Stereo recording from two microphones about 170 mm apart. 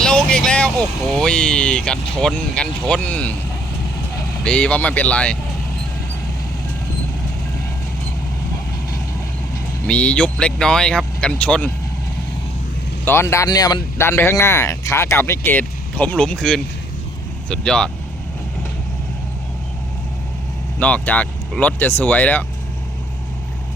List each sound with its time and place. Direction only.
0.0 s speech: 5° left (ahead or behind)
4.4 s speech: 5° left (ahead or behind)
9.8 s speech: 5° left (ahead or behind)
13.1 s speech: 15° left (ahead or behind)
20.7 s speech: 10° left (ahead or behind)